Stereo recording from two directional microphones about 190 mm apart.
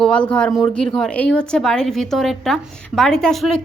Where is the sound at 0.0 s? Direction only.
5° left (ahead or behind).